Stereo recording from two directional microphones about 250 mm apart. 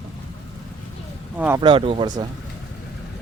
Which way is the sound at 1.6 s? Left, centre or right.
Right.